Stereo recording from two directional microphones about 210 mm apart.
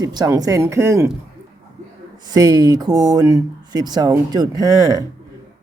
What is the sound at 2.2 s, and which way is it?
Speech, 20° right (ahead or behind).